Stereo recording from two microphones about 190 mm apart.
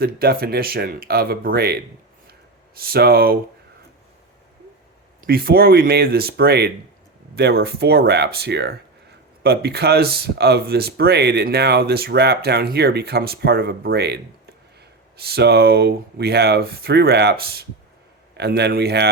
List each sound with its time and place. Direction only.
0.0 s speech: 55° right (ahead or behind)
5.2 s speech: 50° right (ahead or behind)